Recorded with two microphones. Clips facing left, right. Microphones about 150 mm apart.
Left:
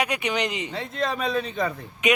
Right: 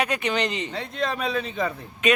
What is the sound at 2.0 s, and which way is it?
Speech, 15° left (ahead or behind).